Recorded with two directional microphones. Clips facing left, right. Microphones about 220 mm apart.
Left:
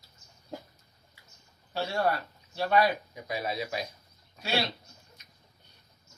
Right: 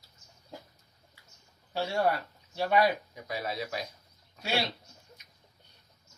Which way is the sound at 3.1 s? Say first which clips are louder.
Left 2 dB; 15° left (ahead or behind).